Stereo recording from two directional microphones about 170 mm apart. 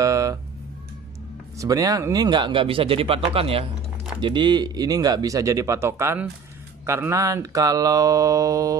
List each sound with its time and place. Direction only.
0.0 s music: 20° right (ahead or behind)
1.6 s speech: 20° right (ahead or behind)